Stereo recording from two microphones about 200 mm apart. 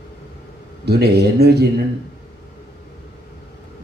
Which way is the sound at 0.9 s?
55° right (ahead or behind).